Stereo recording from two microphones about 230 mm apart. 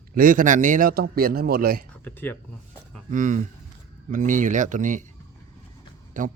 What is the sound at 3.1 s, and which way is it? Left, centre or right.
Speech, right.